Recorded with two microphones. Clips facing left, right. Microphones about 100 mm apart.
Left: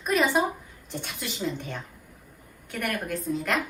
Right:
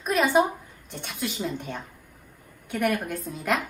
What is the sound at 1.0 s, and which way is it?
A woman's voice, 5° right (ahead or behind).